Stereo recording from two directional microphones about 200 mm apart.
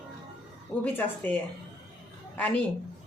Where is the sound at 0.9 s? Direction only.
10° left (ahead or behind).